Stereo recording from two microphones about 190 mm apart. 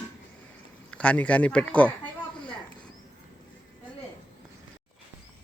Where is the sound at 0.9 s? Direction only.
5° left (ahead or behind).